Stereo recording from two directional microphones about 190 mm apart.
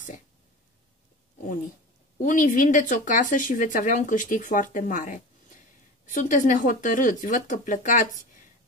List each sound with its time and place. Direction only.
2.1 s speech: 40° left (ahead or behind)